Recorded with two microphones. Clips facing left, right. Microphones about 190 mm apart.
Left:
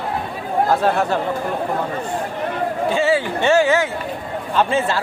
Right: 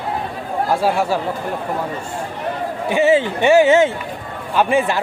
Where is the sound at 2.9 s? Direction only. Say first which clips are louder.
Right 6 dB; 20° right (ahead or behind).